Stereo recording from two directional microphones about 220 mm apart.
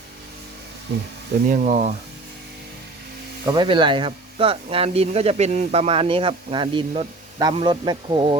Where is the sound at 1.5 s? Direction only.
30° right (ahead or behind).